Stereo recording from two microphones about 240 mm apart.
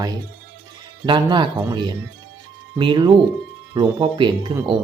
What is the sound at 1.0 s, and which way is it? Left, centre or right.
Speech, centre.